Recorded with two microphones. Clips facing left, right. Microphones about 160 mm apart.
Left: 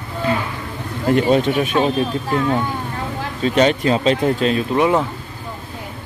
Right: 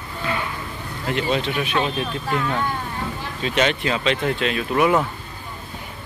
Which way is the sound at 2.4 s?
20° left (ahead or behind).